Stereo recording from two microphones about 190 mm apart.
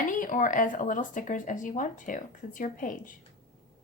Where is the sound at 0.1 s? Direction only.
45° left (ahead or behind).